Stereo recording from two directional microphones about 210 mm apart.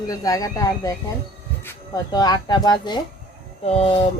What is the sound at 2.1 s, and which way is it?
Speech, 20° left (ahead or behind).